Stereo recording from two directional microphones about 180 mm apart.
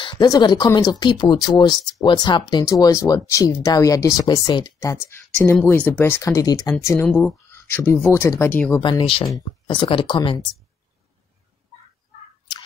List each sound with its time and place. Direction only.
0.0 s speech: 25° left (ahead or behind); by 8.8 s 10° left (ahead or behind)
8.8 s speech: 30° left (ahead or behind)